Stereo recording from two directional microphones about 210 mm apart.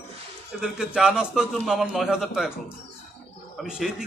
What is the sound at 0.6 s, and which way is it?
A man's voice, 5° right (ahead or behind).